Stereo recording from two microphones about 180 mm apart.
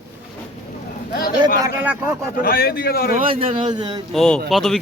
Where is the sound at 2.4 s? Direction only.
55° left (ahead or behind).